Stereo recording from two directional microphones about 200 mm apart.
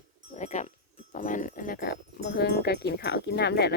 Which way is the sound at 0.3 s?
35° left (ahead or behind).